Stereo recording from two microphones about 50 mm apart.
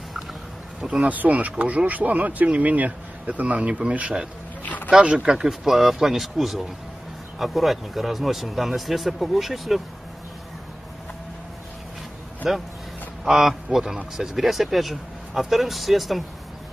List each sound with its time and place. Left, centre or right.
0.7 s speech: right
4.6 s a sound: left
4.9 s a man's voice: centre
5.5 s speech: centre
12.4 s a man's voice: centre